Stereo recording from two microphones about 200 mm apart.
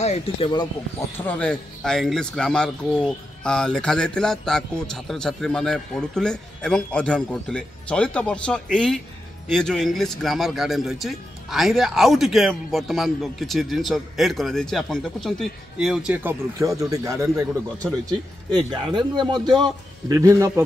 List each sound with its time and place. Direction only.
0.0 s speech: 35° left (ahead or behind)
1.1 s speech: 10° left (ahead or behind); by 17.5 s 15° right (ahead or behind)
17.9 s speech: centre (ahead or behind)
18.5 s a man's voice: 20° right (ahead or behind)